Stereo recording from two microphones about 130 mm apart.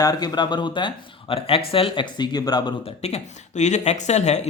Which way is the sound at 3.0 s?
60° left (ahead or behind).